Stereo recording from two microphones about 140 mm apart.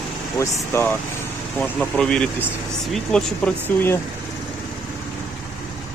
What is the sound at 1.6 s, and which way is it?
Speech, 10° left (ahead or behind).